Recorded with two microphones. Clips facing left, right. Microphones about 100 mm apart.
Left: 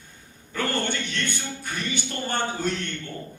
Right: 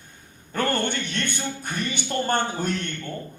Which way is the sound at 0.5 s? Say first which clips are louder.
Right 2 dB; 55° right (ahead or behind).